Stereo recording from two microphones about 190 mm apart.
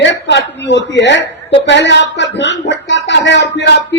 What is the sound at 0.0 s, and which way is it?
Speech, 70° left (ahead or behind).